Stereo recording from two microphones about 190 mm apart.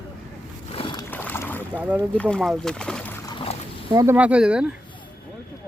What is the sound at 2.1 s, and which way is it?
Speech, 5° left (ahead or behind).